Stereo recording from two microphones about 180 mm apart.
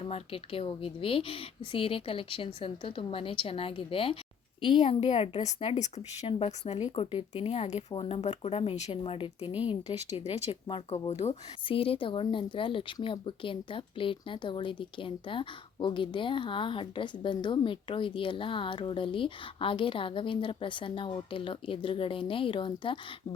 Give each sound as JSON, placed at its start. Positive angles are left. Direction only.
{"t": 0.1, "sound": "a woman's voice", "side_deg": 30}